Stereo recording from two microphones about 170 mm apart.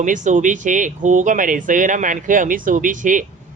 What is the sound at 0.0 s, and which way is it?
Speech, 50° right (ahead or behind).